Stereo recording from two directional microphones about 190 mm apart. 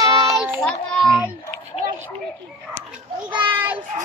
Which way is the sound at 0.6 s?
Centre (ahead or behind).